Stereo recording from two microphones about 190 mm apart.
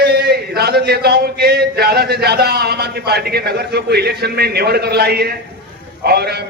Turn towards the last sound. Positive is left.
turn(degrees=-55)  # may be behind; listen again after turning